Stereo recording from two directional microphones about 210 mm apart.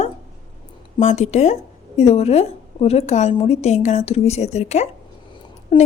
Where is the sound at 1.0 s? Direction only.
35° left (ahead or behind).